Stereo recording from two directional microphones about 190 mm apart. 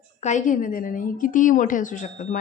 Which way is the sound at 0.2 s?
40° left (ahead or behind).